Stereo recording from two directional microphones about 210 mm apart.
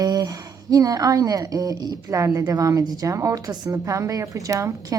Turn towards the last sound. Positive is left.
turn(degrees=-15)  # may be behind; listen again after turning